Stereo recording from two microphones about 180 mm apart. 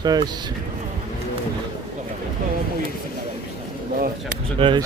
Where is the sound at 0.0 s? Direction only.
25° right (ahead or behind).